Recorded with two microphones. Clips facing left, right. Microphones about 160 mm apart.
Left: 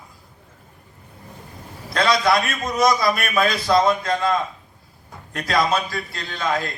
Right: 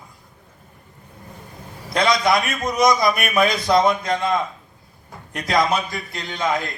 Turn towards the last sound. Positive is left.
turn(degrees=-20)  # may be behind; listen again after turning